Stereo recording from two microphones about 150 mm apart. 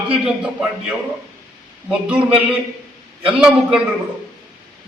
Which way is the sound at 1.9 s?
5° right (ahead or behind).